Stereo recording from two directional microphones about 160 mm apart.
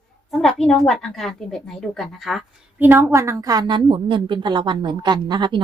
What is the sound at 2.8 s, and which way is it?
A woman's voice, 15° right (ahead or behind).